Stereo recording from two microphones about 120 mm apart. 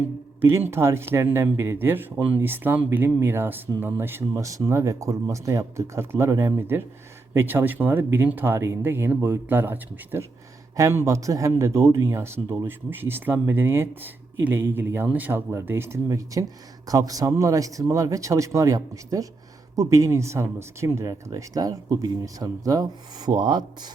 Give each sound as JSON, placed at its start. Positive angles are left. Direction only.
{"t": 0.4, "sound": "speech", "side_deg": -20}